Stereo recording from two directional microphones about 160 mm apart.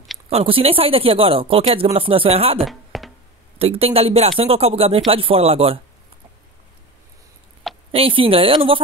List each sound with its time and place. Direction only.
0.3 s speech: 35° right (ahead or behind)
2.6 s a sound: centre (ahead or behind)
3.5 s speech: 40° right (ahead or behind)
7.9 s speech: 35° right (ahead or behind)